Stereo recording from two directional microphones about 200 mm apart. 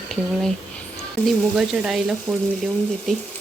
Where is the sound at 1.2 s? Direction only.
Centre (ahead or behind).